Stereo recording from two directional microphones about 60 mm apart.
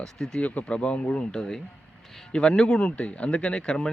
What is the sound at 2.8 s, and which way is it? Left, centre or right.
Speech, left.